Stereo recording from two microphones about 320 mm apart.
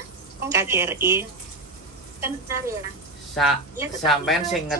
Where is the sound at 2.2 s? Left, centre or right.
Centre.